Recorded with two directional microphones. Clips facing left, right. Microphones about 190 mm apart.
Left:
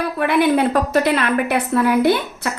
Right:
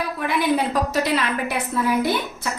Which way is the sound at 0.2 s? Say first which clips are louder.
Left 6 dB; 65° left (ahead or behind).